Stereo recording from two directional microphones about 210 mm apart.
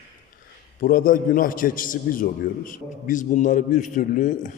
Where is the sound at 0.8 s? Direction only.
40° left (ahead or behind).